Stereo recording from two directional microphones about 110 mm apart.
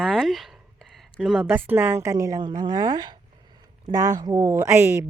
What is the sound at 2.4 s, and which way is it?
Speech, 45° right (ahead or behind).